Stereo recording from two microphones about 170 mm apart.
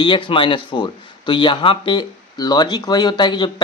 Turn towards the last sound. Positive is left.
turn(degrees=25)  # may be behind; listen again after turning